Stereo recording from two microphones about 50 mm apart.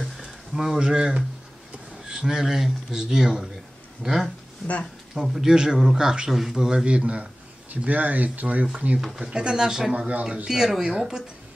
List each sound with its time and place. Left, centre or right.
0.0 s a sound: centre
0.7 s speech: centre
7.7 s speech: right
9.0 s speech: centre
9.9 s speech: right
10.4 s speech: centre